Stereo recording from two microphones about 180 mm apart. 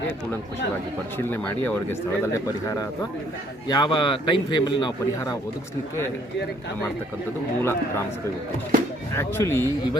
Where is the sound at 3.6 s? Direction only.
25° left (ahead or behind).